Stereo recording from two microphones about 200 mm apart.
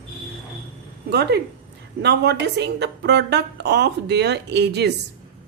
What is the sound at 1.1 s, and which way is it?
A woman's voice, 55° right (ahead or behind).